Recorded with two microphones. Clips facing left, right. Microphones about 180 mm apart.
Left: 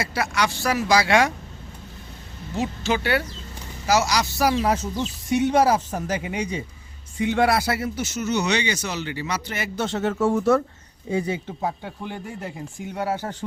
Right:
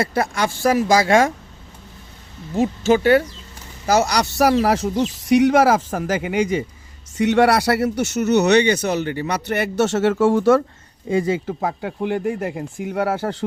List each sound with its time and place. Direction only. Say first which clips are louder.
0.0 s speech: right 4 dB; 50° right (ahead or behind)
2.6 s speech: right 8 dB; 45° right (ahead or behind)
3.8 s a man's voice: right 3 dB; 55° right (ahead or behind); by 6.7 s 90° right
7.2 s speech: right 5 dB; 75° right (ahead or behind)